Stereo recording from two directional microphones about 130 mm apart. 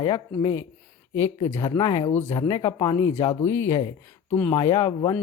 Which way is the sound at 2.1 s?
15° left (ahead or behind).